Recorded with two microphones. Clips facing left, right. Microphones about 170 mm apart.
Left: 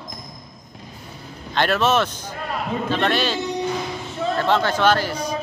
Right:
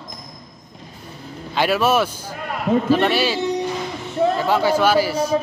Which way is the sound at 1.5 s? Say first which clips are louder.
Right 1 dB; 10° right (ahead or behind).